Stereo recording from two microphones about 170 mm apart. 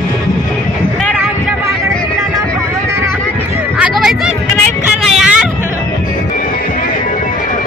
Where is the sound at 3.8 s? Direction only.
5° right (ahead or behind).